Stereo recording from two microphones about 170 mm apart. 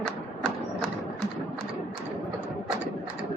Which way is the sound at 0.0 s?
5° left (ahead or behind).